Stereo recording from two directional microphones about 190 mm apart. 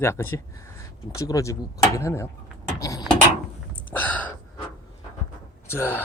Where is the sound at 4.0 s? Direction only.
10° left (ahead or behind).